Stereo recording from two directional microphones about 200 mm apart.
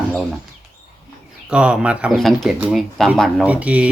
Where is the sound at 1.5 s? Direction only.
5° right (ahead or behind).